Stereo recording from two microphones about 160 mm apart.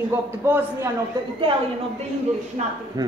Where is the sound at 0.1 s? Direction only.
15° right (ahead or behind).